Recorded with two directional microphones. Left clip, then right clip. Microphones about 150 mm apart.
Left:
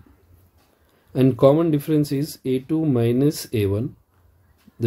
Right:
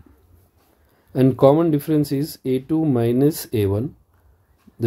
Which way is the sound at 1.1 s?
25° right (ahead or behind).